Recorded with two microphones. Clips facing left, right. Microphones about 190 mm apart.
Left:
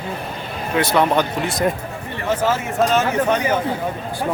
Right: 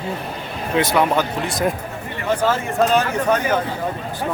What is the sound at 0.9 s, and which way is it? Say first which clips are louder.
Speech: left 3 dB; 5° right (ahead or behind).